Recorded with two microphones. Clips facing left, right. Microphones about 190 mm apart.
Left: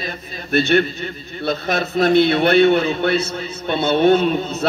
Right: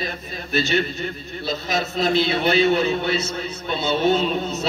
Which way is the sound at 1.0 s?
Centre (ahead or behind).